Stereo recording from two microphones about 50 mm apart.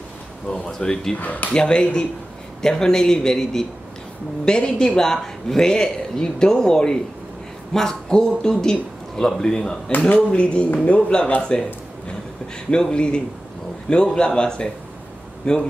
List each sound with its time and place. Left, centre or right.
0.5 s speech: centre
1.2 s speech: left
1.5 s speech: centre
9.8 s speech: left
10.1 s a man's voice: left
12.7 s a man's voice: centre